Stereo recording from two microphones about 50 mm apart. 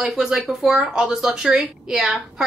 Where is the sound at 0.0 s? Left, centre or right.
Centre.